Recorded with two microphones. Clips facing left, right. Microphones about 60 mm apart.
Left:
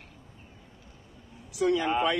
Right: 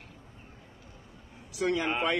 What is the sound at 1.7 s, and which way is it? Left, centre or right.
Speech, right.